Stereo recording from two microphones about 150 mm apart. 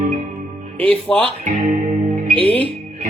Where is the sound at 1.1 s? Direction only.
Centre (ahead or behind).